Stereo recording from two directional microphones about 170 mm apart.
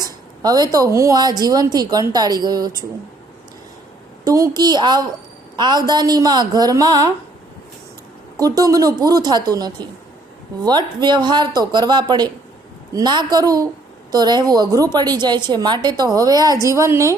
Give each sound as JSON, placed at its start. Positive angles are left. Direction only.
{"t": 0.0, "sound": "a woman's voice", "side_deg": -25}
{"t": 4.2, "sound": "a woman's voice", "side_deg": -20}
{"t": 8.4, "sound": "a woman's voice", "side_deg": -20}